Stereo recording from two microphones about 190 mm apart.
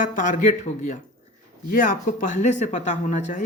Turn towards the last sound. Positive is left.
turn(degrees=40)  # may be behind; listen again after turning